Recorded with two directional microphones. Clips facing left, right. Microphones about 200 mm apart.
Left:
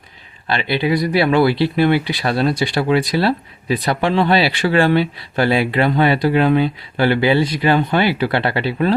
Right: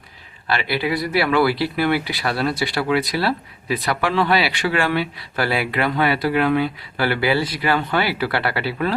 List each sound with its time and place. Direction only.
0.4 s speech: 25° left (ahead or behind)